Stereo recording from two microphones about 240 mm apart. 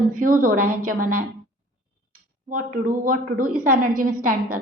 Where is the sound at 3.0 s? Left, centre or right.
Right.